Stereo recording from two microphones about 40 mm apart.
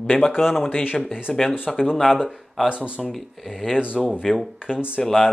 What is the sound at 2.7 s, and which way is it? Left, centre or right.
Speech, right.